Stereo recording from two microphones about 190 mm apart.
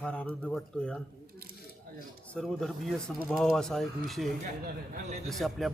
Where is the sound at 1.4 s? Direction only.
55° right (ahead or behind).